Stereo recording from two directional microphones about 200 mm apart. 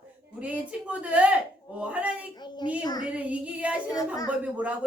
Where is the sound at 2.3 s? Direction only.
20° left (ahead or behind).